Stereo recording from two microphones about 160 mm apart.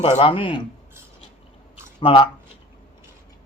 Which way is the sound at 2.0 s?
35° left (ahead or behind).